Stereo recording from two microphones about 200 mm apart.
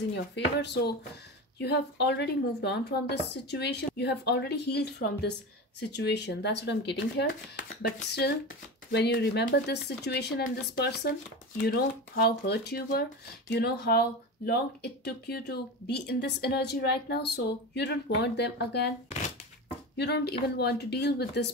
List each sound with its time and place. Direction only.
0.1 s speech: 60° left (ahead or behind)
20.0 s speech: 55° left (ahead or behind)